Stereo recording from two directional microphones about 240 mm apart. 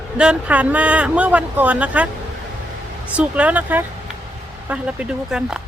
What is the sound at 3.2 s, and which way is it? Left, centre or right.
Speech, centre.